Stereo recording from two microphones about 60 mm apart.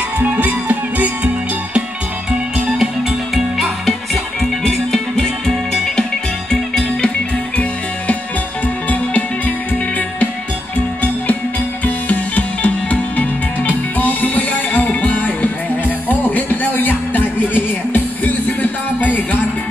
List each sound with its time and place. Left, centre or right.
0.2 s music: right
2.8 s music: centre
11.8 s music: left